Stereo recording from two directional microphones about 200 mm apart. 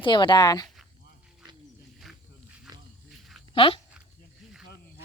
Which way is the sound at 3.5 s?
25° left (ahead or behind).